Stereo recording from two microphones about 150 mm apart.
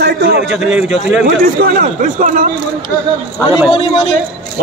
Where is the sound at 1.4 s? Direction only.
65° right (ahead or behind).